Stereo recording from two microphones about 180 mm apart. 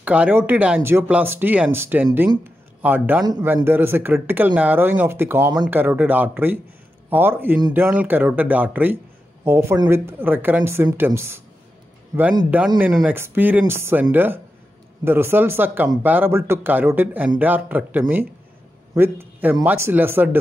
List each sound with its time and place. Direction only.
0.0 s speech: 5° right (ahead or behind)
12.4 s speech: 10° right (ahead or behind)